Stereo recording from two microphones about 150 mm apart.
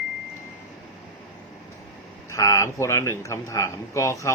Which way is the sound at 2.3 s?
20° left (ahead or behind).